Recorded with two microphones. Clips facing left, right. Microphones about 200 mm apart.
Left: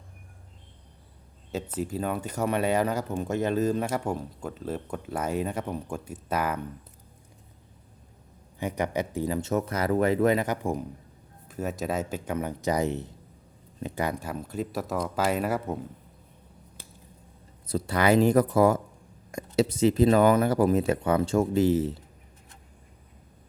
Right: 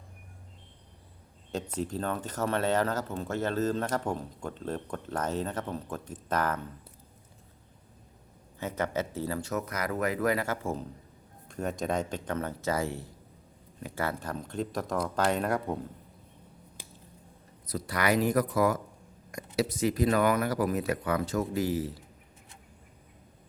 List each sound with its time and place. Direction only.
1.5 s speech: 5° left (ahead or behind)
8.5 s speech: 15° left (ahead or behind)
11.4 s speech: 5° left (ahead or behind)
17.7 s speech: 30° left (ahead or behind)